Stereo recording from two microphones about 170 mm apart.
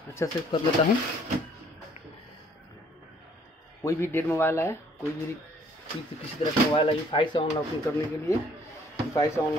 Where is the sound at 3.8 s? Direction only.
15° left (ahead or behind).